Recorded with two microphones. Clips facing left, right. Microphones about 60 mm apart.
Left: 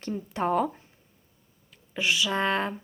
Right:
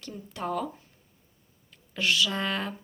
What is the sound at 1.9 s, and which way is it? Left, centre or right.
Speech, centre.